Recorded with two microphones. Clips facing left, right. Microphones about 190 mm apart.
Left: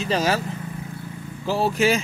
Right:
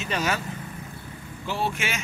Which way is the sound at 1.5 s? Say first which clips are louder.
Left 9 dB; 35° left (ahead or behind).